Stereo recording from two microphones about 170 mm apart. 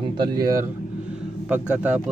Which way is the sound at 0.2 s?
20° right (ahead or behind).